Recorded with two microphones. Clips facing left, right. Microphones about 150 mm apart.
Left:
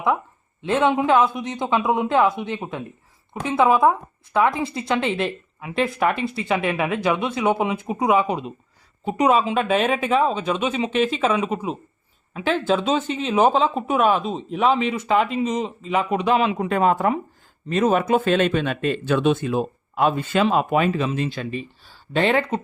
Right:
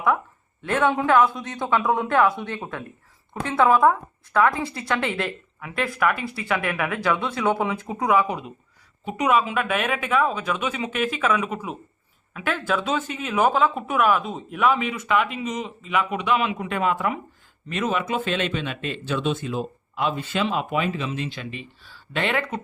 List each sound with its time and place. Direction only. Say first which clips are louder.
0.6 s speech: left 2 dB; 20° left (ahead or behind)